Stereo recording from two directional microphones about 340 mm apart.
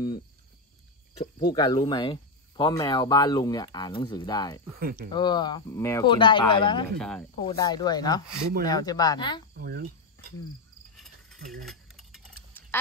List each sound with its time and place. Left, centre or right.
1.5 s speech: centre
4.7 s speech: right
5.1 s speech: centre
7.0 s speech: centre
7.3 s speech: centre
9.6 s speech: right
11.0 s cricket: centre
11.6 s a sound: centre